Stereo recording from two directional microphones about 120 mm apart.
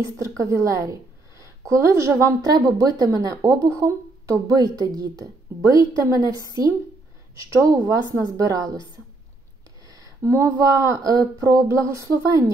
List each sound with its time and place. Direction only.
0.4 s a woman's voice: 25° right (ahead or behind)
9.8 s a sound: 30° right (ahead or behind)
10.6 s a woman's voice: 30° right (ahead or behind)